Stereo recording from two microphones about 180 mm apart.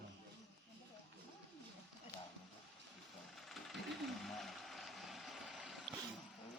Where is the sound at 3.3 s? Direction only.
Centre (ahead or behind).